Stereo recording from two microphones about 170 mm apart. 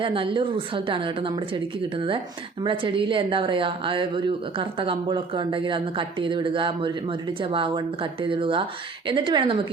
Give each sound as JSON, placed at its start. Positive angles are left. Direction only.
{"t": 0.0, "sound": "a woman's voice", "side_deg": -30}
{"t": 2.6, "sound": "a woman's voice", "side_deg": -30}